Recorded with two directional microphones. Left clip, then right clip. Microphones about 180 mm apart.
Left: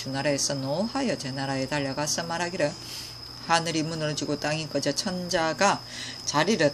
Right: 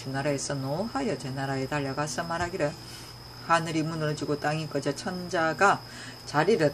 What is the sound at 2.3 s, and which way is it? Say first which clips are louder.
Speech: left 2 dB; 25° left (ahead or behind).